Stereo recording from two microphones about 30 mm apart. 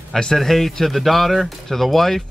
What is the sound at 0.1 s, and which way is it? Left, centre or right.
Speech, centre.